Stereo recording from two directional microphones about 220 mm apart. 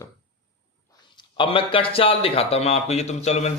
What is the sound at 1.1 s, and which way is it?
Speech, 25° left (ahead or behind).